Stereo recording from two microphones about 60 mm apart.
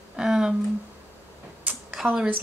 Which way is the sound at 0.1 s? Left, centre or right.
Centre.